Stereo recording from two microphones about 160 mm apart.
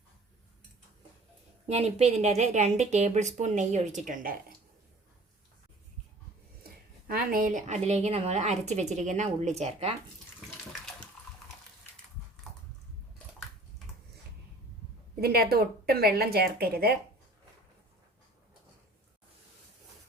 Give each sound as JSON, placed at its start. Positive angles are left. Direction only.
{"t": 1.6, "sound": "a woman's voice", "side_deg": -40}
{"t": 7.1, "sound": "a woman's voice", "side_deg": -65}
{"t": 15.2, "sound": "a woman's voice", "side_deg": -75}